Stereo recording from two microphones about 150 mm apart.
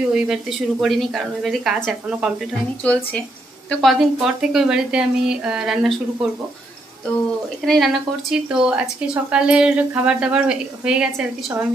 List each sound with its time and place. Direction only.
0.1 s a woman's voice: 5° right (ahead or behind)
2.8 s a woman's voice: 10° left (ahead or behind)
7.4 s a woman's voice: centre (ahead or behind)